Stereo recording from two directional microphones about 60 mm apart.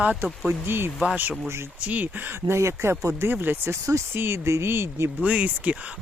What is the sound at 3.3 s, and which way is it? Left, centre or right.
Speech, right.